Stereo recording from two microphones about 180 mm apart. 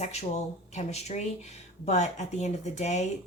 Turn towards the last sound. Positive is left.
turn(degrees=40)  # may be behind; listen again after turning